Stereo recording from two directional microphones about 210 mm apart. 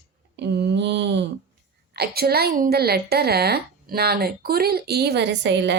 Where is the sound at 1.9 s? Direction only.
50° right (ahead or behind).